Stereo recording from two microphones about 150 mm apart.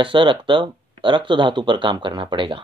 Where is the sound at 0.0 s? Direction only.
35° right (ahead or behind).